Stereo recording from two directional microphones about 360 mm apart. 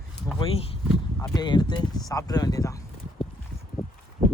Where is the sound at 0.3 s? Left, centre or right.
Centre.